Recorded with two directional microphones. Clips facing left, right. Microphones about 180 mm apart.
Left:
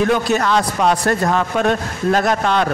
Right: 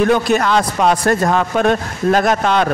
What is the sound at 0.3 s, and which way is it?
Speech, 55° right (ahead or behind).